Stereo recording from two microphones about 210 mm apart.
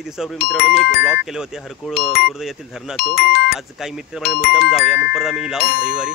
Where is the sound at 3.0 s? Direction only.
45° left (ahead or behind).